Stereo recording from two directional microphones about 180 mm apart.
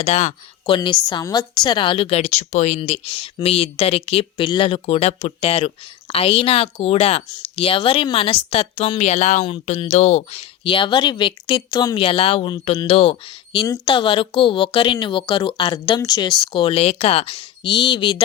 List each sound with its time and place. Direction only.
0.0 s speech: 35° left (ahead or behind)
0.6 s a woman's voice: 25° left (ahead or behind)